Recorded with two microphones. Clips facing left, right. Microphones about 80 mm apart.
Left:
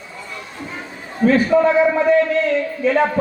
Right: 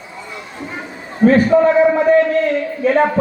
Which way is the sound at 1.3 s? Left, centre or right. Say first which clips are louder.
Right 3 dB; right.